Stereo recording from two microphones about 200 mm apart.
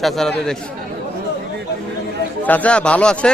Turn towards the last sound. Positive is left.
turn(degrees=5)  # may be behind; listen again after turning